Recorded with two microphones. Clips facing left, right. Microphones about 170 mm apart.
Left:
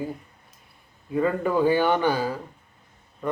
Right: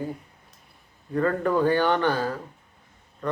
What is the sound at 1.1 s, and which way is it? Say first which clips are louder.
Speech: even; 5° left (ahead or behind).